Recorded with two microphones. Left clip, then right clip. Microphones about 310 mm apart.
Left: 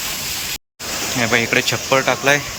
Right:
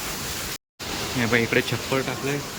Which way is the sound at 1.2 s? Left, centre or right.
Centre.